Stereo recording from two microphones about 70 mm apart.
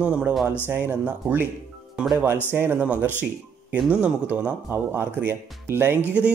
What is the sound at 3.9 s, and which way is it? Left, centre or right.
Speech, centre.